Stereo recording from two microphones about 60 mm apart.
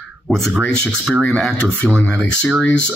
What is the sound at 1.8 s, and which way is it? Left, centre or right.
Speech, centre.